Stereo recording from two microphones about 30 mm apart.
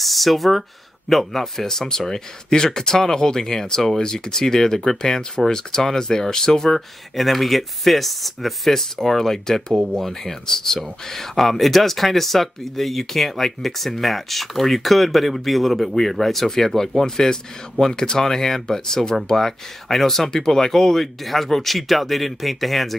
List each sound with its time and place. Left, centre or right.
0.0 s speech: centre